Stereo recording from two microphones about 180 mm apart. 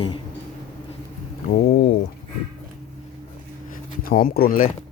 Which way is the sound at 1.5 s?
60° left (ahead or behind).